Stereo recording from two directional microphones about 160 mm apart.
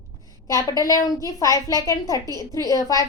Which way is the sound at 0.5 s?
20° left (ahead or behind).